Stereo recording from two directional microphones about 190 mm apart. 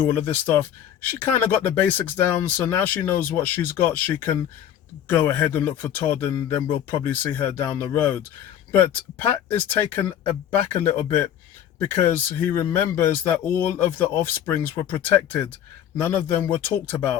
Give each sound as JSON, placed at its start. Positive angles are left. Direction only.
{"t": 0.1, "sound": "speech", "side_deg": 10}